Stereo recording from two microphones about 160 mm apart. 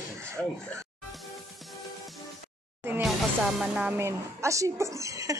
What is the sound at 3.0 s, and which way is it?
A woman's voice, centre (ahead or behind).